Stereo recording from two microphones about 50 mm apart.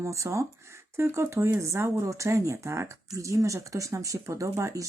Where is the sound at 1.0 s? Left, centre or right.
Right.